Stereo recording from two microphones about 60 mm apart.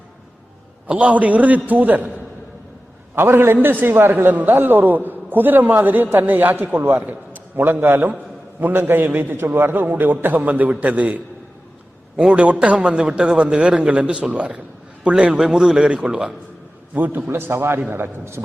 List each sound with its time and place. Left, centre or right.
0.9 s a man's voice: right
3.2 s a man's voice: right; by 16.3 s centre
16.9 s a man's voice: right